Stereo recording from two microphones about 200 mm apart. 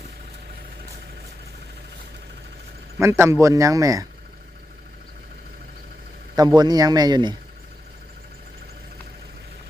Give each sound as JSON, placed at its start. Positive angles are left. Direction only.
{"t": 3.0, "sound": "a man's voice", "side_deg": -15}
{"t": 6.3, "sound": "a man's voice", "side_deg": -20}